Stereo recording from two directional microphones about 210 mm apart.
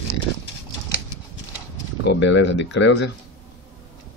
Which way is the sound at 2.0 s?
60° left (ahead or behind).